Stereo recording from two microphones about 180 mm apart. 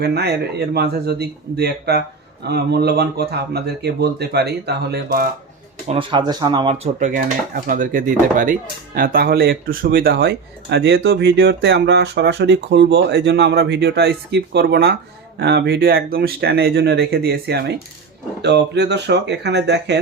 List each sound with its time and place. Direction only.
0.0 s speech: 65° right (ahead or behind)
5.9 s speech: 30° right (ahead or behind)
7.5 s speech: 50° right (ahead or behind); by 20.0 s 70° right (ahead or behind)